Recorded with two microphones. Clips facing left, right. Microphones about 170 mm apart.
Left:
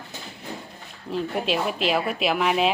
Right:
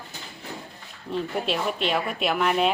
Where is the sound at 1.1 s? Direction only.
Centre (ahead or behind).